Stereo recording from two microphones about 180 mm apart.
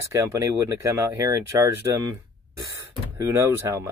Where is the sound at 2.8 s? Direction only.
15° right (ahead or behind).